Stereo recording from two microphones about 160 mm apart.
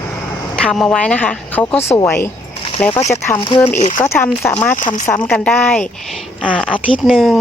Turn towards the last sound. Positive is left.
turn(degrees=0)  # may be behind; listen again after turning